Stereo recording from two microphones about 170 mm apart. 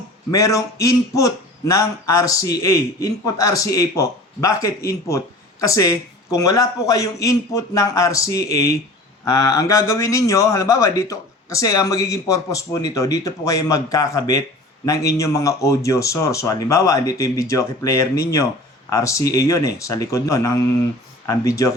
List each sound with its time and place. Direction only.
0.3 s speech: 20° left (ahead or behind)